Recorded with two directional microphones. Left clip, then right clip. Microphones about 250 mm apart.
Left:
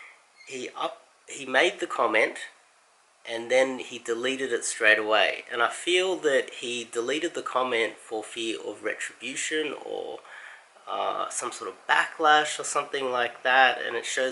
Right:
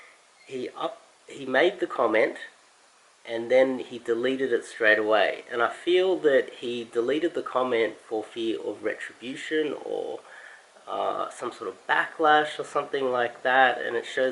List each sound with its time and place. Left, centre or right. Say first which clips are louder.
0.4 s speech: even; centre
9.8 s speech: right 3 dB; right
10.8 s speech: even; centre